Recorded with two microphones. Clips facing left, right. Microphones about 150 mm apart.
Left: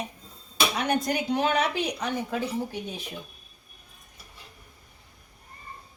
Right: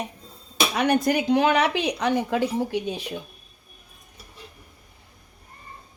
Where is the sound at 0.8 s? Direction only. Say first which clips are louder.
Right 8 dB; 80° right.